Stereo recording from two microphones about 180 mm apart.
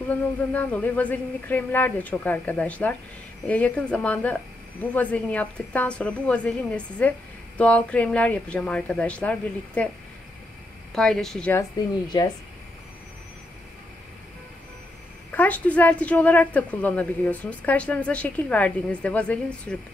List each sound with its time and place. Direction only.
0.5 s a woman's voice: 10° left (ahead or behind)
10.9 s speech: 5° left (ahead or behind)
12.1 s speech: 25° left (ahead or behind)
15.3 s a woman's voice: 10° left (ahead or behind)